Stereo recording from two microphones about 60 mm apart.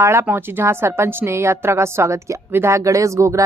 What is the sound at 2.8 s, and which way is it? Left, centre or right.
Speech, right.